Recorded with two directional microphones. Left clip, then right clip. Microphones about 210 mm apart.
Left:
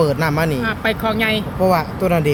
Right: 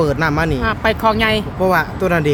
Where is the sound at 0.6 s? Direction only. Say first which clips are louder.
Right 4 dB; 50° right (ahead or behind).